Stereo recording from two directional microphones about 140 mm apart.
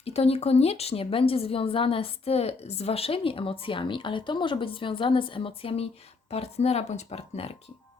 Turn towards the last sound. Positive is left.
turn(degrees=45)  # may be behind; listen again after turning